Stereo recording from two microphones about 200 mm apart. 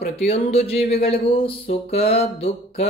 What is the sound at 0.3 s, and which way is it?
Speech, 30° left (ahead or behind).